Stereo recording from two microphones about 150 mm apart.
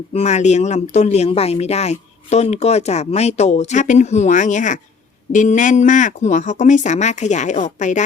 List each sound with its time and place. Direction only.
0.1 s speech: 45° left (ahead or behind)